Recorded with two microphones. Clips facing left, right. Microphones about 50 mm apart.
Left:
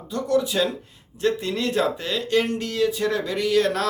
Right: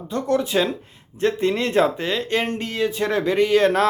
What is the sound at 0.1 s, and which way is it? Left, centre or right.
A man's voice, right.